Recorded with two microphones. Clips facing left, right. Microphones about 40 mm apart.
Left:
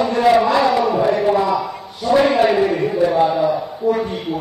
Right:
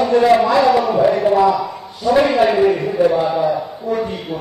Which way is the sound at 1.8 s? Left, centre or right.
Left.